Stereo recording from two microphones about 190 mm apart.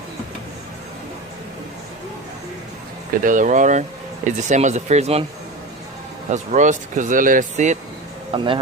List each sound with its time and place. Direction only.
3.2 s speech: 45° right (ahead or behind)
6.3 s speech: 40° right (ahead or behind)
8.3 s a man's voice: 25° right (ahead or behind)